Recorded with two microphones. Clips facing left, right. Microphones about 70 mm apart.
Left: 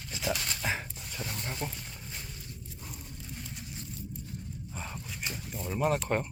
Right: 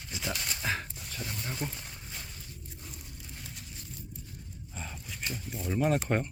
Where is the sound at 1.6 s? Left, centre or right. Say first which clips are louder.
Right 1 dB; centre.